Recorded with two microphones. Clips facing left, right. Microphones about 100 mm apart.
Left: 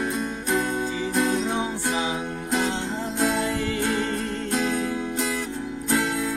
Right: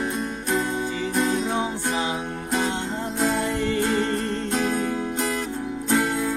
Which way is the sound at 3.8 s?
Centre (ahead or behind).